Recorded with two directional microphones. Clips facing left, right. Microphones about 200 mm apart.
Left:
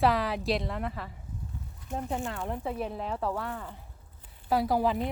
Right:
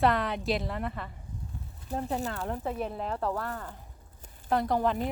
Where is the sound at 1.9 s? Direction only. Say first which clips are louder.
Right 2 dB; 35° right (ahead or behind).